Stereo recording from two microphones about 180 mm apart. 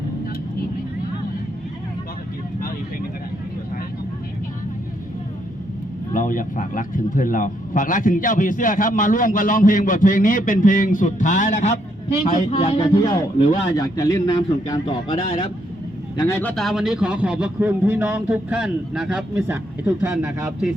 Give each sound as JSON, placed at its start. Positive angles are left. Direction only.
{"t": 6.1, "sound": "speech", "side_deg": 50}
{"t": 12.5, "sound": "music", "side_deg": 35}
{"t": 13.7, "sound": "a man's voice", "side_deg": 20}